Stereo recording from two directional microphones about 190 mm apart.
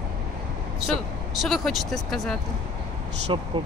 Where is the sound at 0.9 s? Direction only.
Centre (ahead or behind).